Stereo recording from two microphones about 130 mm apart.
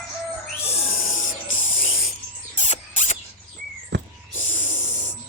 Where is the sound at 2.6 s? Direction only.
65° left (ahead or behind).